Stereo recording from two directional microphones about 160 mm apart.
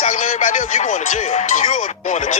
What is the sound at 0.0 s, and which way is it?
Speech, 50° left (ahead or behind).